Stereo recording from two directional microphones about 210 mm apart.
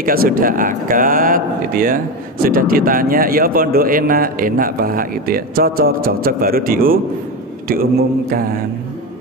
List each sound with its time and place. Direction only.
0.0 s speech: 45° right (ahead or behind)